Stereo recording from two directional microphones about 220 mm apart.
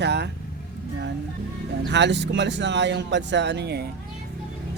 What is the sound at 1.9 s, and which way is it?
Speech, 55° right (ahead or behind).